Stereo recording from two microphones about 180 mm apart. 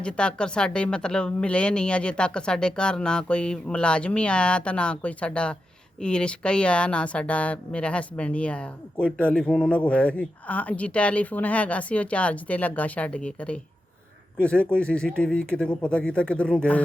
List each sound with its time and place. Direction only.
0.0 s speech: 5° left (ahead or behind)